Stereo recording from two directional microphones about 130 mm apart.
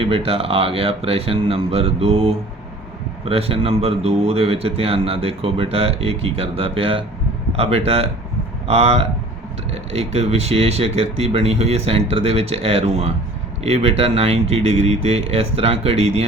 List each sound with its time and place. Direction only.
0.0 s a man's voice: 45° right (ahead or behind)